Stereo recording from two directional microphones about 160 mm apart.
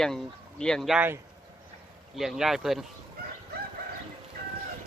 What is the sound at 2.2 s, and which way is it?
Speech, 5° right (ahead or behind).